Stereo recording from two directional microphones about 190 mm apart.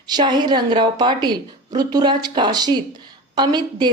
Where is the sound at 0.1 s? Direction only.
25° right (ahead or behind).